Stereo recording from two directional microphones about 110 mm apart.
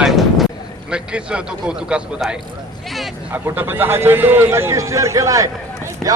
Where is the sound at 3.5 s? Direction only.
20° right (ahead or behind).